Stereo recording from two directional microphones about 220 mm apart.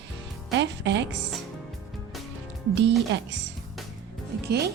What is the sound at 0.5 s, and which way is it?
Speech, 50° right (ahead or behind).